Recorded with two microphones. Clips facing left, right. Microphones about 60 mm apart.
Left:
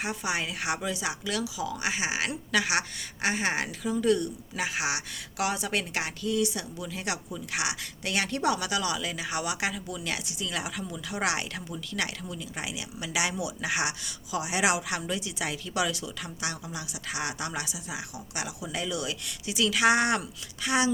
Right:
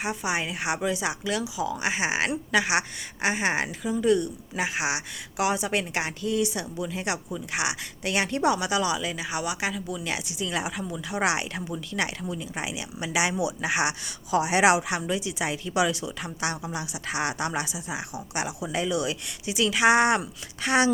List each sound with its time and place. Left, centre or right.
0.0 s a woman's voice: centre; by 2.3 s right
2.3 s a woman's voice: centre
10.0 s speech: centre
14.3 s speech: right
14.8 s speech: centre
20.6 s speech: right